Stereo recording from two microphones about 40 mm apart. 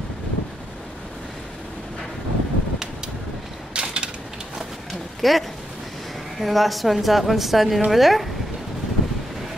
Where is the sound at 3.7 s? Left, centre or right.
Right.